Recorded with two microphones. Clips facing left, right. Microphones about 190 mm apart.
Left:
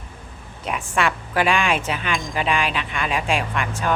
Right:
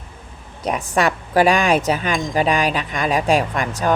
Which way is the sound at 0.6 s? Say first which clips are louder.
Right 4 dB; 40° right (ahead or behind).